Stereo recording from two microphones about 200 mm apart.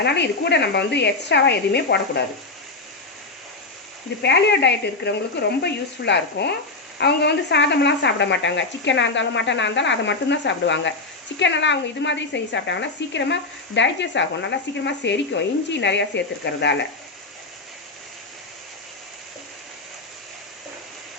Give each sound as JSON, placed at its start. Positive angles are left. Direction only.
{"t": 0.0, "sound": "a woman's voice", "side_deg": 60}
{"t": 4.2, "sound": "a woman's voice", "side_deg": 60}